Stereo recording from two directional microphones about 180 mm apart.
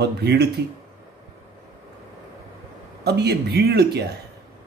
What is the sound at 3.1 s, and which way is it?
Speech, 65° right (ahead or behind).